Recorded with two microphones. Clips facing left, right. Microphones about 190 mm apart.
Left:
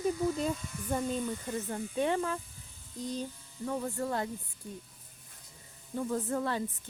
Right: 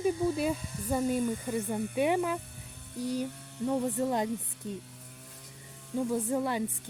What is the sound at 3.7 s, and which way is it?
Speech, 20° right (ahead or behind).